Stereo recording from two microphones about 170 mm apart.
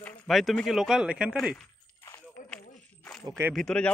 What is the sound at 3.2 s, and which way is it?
Speech, 20° right (ahead or behind).